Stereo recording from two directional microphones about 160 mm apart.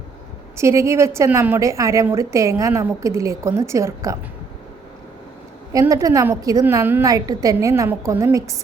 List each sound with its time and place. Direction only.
0.5 s a woman's voice: 15° right (ahead or behind)
5.8 s a woman's voice: 20° right (ahead or behind)